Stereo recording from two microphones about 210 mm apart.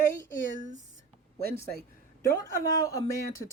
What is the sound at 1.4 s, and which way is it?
Speech, 45° right (ahead or behind).